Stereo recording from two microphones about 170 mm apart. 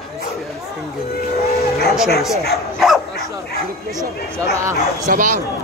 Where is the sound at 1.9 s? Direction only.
Centre (ahead or behind).